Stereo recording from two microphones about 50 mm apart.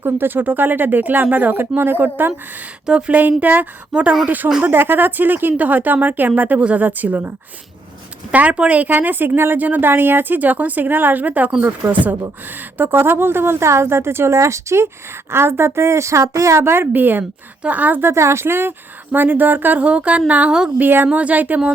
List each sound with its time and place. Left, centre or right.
0.0 s speech: right
4.6 s speech: right
6.6 s speech: right
8.3 s speech: right
9.6 s a woman's voice: right
15.3 s a woman's voice: right
18.0 s a woman's voice: right
19.8 s speech: right
20.7 s speech: right
21.1 s speech: right